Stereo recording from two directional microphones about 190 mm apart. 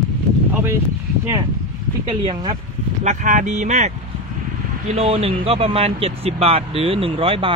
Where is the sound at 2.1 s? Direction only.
25° right (ahead or behind).